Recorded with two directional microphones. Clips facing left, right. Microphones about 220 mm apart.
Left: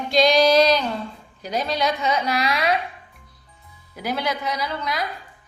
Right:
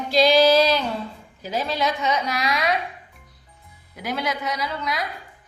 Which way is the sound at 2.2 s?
30° left (ahead or behind).